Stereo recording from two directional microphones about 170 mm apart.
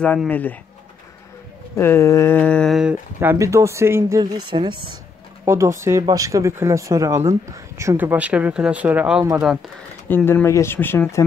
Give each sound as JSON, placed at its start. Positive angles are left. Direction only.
{"t": 0.3, "sound": "speech", "side_deg": 10}
{"t": 1.8, "sound": "speech", "side_deg": 15}
{"t": 5.4, "sound": "speech", "side_deg": -15}
{"t": 10.0, "sound": "speech", "side_deg": 10}